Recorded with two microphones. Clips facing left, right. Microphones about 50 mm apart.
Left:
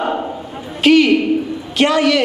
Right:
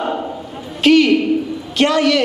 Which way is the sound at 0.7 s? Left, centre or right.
Left.